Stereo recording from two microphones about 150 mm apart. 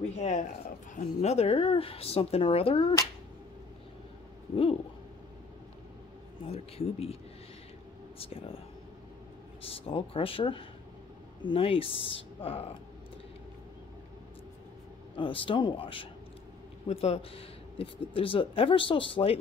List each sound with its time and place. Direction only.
0.1 s speech: 50° left (ahead or behind)
6.5 s speech: 45° left (ahead or behind)
8.2 s speech: 40° left (ahead or behind)
9.6 s speech: 40° left (ahead or behind)
15.1 s speech: 35° left (ahead or behind)